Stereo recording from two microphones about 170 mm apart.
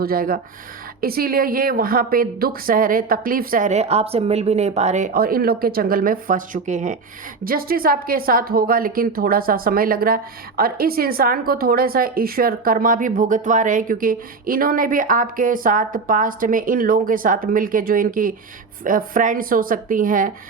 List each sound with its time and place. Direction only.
0.0 s a woman's voice: 60° right (ahead or behind)
7.4 s a woman's voice: 60° right (ahead or behind)